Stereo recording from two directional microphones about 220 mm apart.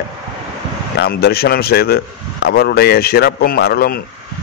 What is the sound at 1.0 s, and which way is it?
Speech, 45° left (ahead or behind).